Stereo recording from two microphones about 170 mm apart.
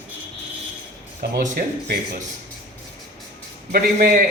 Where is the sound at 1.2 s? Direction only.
75° right (ahead or behind).